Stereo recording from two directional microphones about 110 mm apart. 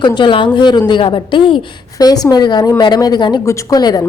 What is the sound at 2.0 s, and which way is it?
A woman's voice, 35° left (ahead or behind).